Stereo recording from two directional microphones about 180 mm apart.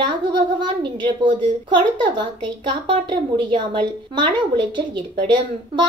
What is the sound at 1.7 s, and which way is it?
A woman's voice, 25° right (ahead or behind).